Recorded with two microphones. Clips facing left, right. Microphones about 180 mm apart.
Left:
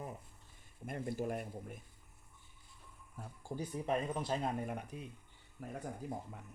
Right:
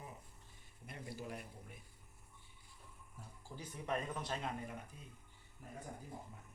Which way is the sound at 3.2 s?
55° left (ahead or behind).